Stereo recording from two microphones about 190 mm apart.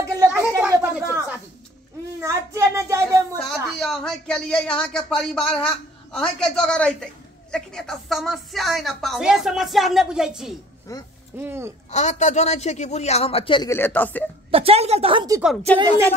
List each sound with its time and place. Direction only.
0.3 s a sound: 10° right (ahead or behind)
2.2 s child singing: 15° right (ahead or behind)
3.7 s a woman's voice: centre (ahead or behind)
10.9 s speech: 15° left (ahead or behind)
11.3 s speech: 10° right (ahead or behind)
11.9 s a man's voice: 35° left (ahead or behind)
13.7 s speech: 10° left (ahead or behind)
14.5 s a woman's voice: 30° right (ahead or behind)
15.4 s a woman's voice: 5° left (ahead or behind)